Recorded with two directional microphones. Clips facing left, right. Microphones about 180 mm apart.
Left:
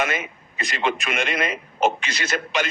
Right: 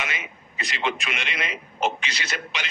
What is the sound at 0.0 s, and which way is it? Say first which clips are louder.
Speech: left 8 dB; 50° left (ahead or behind).